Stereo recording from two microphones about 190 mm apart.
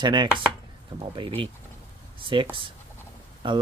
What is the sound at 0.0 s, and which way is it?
Speech, 25° right (ahead or behind).